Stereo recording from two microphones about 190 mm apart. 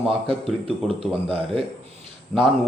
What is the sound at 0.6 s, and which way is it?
Speech, 30° right (ahead or behind).